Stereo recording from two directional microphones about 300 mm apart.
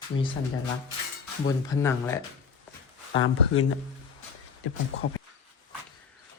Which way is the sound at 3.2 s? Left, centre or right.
Left.